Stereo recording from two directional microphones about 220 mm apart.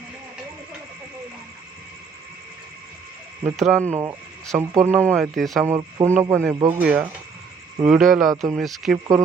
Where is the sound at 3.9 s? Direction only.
10° right (ahead or behind).